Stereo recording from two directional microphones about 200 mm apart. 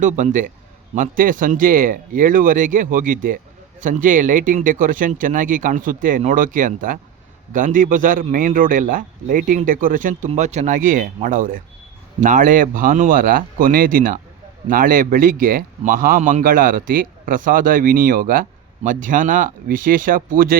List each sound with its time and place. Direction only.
0.0 s a man's voice: 40° right (ahead or behind)